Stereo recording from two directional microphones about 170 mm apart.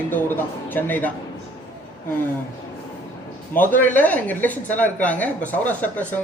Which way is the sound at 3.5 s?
10° left (ahead or behind).